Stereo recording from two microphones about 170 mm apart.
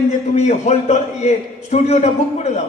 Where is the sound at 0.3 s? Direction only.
40° left (ahead or behind).